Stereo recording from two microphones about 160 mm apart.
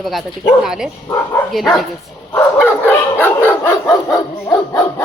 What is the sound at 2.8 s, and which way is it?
Dog, 10° left (ahead or behind).